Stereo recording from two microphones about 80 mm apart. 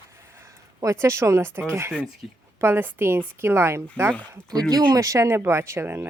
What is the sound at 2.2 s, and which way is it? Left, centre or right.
Speech, centre.